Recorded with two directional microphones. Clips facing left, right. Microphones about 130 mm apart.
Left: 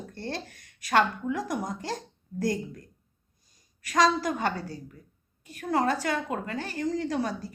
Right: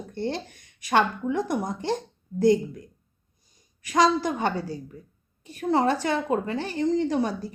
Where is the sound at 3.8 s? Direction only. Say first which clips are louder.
Right 2 dB; 20° right (ahead or behind).